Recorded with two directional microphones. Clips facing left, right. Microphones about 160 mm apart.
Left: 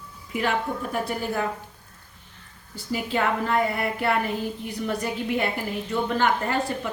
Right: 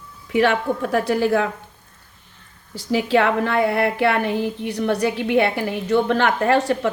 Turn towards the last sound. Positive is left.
turn(degrees=-85)